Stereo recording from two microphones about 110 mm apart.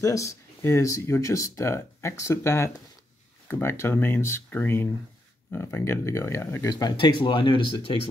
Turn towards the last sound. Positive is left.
turn(degrees=50)  # may be behind; listen again after turning